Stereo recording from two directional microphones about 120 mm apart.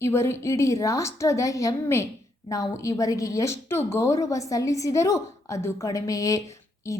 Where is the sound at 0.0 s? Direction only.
20° left (ahead or behind).